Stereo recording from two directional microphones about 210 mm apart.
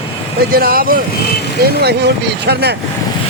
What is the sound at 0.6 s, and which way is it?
Speech, 45° right (ahead or behind).